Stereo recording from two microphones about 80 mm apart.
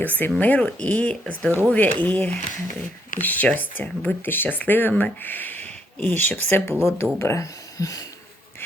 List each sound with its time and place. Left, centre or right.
0.0 s speech: left